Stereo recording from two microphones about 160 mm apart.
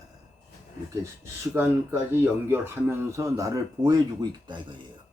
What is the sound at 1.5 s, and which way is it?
Speech, 15° right (ahead or behind).